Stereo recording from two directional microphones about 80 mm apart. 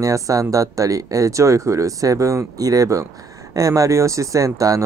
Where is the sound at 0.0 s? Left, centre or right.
Right.